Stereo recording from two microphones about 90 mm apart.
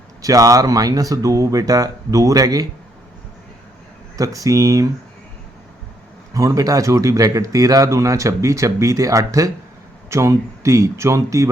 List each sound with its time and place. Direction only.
0.2 s speech: 40° right (ahead or behind)
4.2 s speech: 40° right (ahead or behind)
6.3 s speech: 40° right (ahead or behind)